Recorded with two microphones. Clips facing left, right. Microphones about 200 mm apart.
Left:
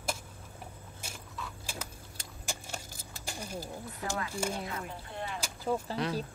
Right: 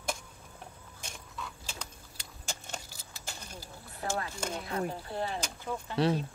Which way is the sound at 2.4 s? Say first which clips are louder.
Left 1 dB; 10° left (ahead or behind).